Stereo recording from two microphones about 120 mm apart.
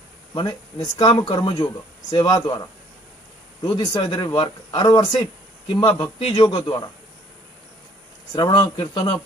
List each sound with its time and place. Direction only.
0.3 s a man's voice: 35° left (ahead or behind)
8.4 s speech: 40° left (ahead or behind)